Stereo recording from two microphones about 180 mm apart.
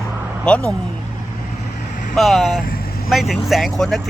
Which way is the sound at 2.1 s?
Centre (ahead or behind).